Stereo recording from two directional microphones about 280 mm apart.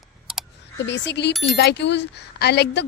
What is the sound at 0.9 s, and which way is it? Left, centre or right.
Speech, left.